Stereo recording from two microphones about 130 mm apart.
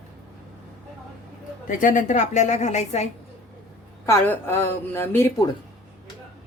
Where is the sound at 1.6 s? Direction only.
85° left; by 3.1 s 60° left (ahead or behind).